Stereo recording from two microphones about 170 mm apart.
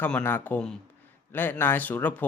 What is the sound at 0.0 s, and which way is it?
Speech, 10° left (ahead or behind).